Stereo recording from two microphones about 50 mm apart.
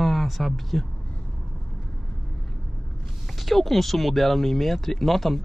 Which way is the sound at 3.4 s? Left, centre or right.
Centre.